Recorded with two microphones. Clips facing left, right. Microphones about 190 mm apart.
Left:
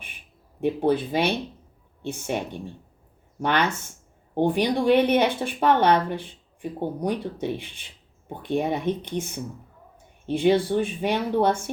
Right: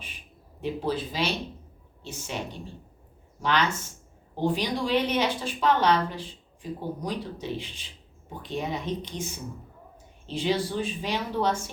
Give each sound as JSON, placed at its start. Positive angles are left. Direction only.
{"t": 0.6, "sound": "a woman's voice", "side_deg": 60}